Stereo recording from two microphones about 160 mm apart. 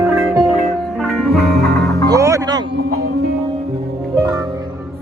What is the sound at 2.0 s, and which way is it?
Music, 20° right (ahead or behind).